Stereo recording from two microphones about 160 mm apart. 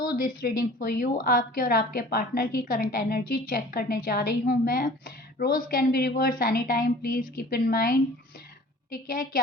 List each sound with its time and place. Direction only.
0.2 s a woman's voice: 60° left (ahead or behind)